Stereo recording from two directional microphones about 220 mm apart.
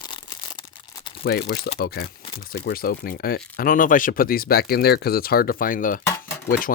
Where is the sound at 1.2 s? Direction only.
45° left (ahead or behind).